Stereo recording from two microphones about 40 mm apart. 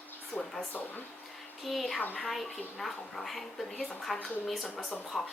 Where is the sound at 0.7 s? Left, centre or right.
Left.